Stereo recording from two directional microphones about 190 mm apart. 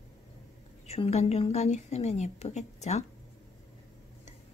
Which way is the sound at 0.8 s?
35° left (ahead or behind).